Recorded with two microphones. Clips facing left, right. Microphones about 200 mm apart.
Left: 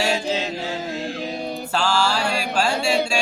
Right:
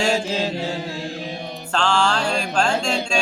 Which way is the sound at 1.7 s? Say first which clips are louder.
Right 2 dB; 5° left (ahead or behind).